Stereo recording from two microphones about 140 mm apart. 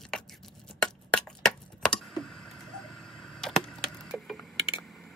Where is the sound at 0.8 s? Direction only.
5° left (ahead or behind).